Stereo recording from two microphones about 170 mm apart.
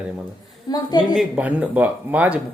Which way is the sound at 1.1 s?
10° right (ahead or behind).